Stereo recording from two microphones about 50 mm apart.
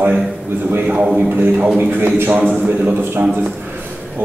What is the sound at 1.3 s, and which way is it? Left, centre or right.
A man's voice, right.